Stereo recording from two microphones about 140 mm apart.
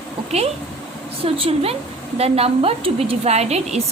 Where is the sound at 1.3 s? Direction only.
45° right (ahead or behind).